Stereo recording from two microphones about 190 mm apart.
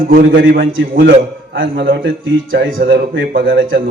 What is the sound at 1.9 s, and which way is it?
A man's voice, 80° right.